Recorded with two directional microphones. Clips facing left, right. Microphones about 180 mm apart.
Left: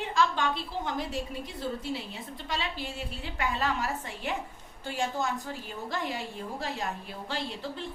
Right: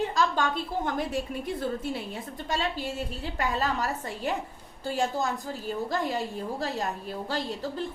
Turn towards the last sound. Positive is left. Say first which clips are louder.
# right 4 dB
turn(degrees=-40)  # may be behind; listen again after turning